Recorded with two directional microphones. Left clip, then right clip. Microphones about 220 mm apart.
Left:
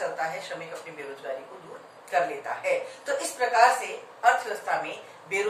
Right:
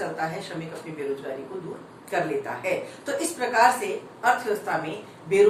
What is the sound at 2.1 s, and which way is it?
Speech, centre (ahead or behind).